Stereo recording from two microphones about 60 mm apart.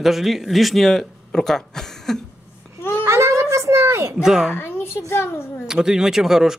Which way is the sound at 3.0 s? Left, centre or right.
Right.